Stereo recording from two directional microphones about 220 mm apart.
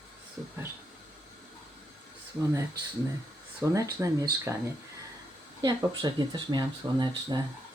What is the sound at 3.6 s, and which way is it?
Speech, 15° right (ahead or behind).